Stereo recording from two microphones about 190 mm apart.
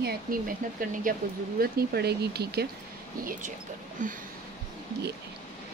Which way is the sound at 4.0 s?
45° right (ahead or behind).